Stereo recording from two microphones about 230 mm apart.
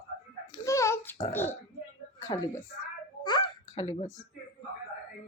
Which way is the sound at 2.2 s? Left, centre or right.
Centre.